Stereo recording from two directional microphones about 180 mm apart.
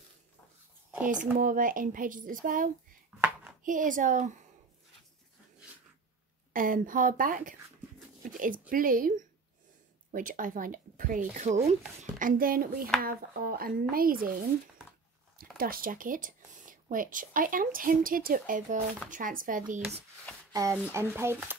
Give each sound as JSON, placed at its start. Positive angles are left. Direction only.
{"t": 1.4, "sound": "speech", "side_deg": -50}
{"t": 3.1, "sound": "a sound", "side_deg": -10}
{"t": 3.6, "sound": "speech", "side_deg": -45}
{"t": 6.5, "sound": "speech", "side_deg": -50}
{"t": 15.5, "sound": "speech", "side_deg": -55}
{"t": 20.5, "sound": "speech", "side_deg": -15}